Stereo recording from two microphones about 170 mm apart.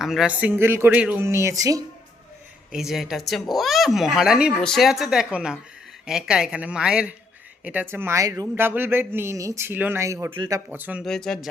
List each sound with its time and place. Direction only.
0.0 s speech: 5° right (ahead or behind); by 1.8 s 20° right (ahead or behind)
2.7 s speech: centre (ahead or behind); by 10.3 s 15° right (ahead or behind)
10.3 s speech: 30° right (ahead or behind)
10.7 s speech: 10° right (ahead or behind)
11.0 s speech: 5° left (ahead or behind)